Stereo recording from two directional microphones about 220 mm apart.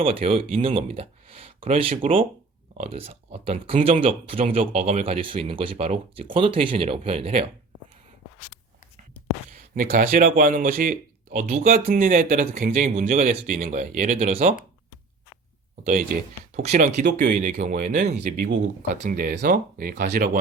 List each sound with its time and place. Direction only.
0.0 s speech: 25° right (ahead or behind)
9.5 s speech: 40° right (ahead or behind)
15.9 s speech: 35° right (ahead or behind)